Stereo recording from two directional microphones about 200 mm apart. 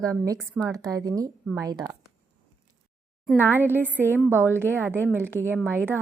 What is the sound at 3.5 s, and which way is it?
A woman's voice, 10° right (ahead or behind).